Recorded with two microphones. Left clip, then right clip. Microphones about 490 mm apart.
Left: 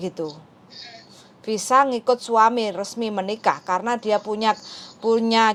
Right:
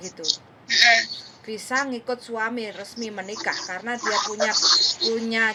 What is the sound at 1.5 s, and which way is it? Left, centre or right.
A woman's voice, left.